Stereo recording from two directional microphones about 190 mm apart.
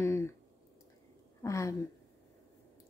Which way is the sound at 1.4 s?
15° left (ahead or behind).